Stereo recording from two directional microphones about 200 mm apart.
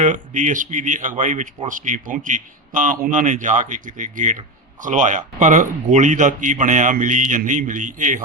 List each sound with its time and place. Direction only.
0.0 s speech: 40° right (ahead or behind)